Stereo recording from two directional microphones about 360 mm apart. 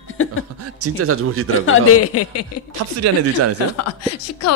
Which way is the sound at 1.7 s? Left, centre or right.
Left.